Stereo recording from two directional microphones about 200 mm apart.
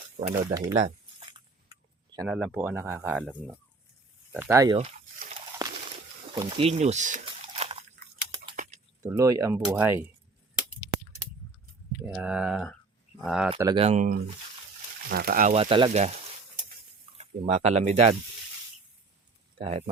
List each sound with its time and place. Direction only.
0.2 s speech: 40° right (ahead or behind)
0.5 s speech: 15° right (ahead or behind)
0.8 s a sound: 30° right (ahead or behind)
2.2 s speech: 5° right (ahead or behind)
4.4 s speech: 15° right (ahead or behind)
5.6 s a sound: 20° right (ahead or behind); by 8.8 s 40° right (ahead or behind)
9.0 s speech: 15° right (ahead or behind)
12.0 s speech: 5° right (ahead or behind)
13.6 s speech: 20° right (ahead or behind)
13.8 s speech: 35° right (ahead or behind)
15.1 s speech: 50° right (ahead or behind)
15.5 s speech: 25° right (ahead or behind)
17.2 s speech: 30° right (ahead or behind)
19.5 s speech: 30° right (ahead or behind)